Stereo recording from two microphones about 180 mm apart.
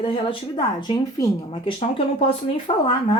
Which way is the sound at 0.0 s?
30° left (ahead or behind).